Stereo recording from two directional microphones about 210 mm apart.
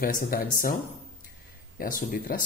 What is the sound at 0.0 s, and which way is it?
Speech, 45° left (ahead or behind).